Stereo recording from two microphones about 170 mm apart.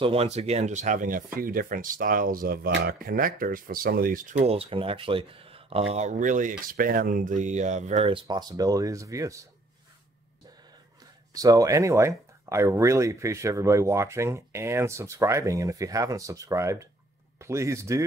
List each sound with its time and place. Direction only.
0.0 s speech: 35° right (ahead or behind)
8.1 s speech: 30° right (ahead or behind)
11.3 s speech: 20° right (ahead or behind)